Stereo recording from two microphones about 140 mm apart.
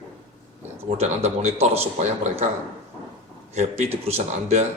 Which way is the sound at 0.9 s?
50° right (ahead or behind).